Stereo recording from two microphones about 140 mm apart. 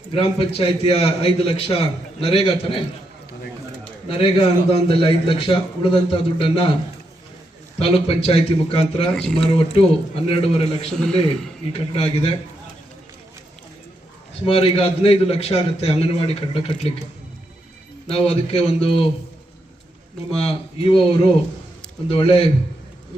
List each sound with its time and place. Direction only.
0.1 s a man's voice: 40° left (ahead or behind)
4.1 s a man's voice: 40° left (ahead or behind)
7.8 s a man's voice: 40° left (ahead or behind)
9.1 s speech: 5° left (ahead or behind)
9.5 s a man's voice: 45° left (ahead or behind)
14.4 s a man's voice: 40° left (ahead or behind)
18.1 s a man's voice: 45° left (ahead or behind)
20.4 s a man's voice: 40° left (ahead or behind)